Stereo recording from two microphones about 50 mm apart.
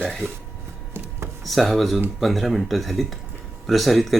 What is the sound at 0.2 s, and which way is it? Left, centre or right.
Speech, right.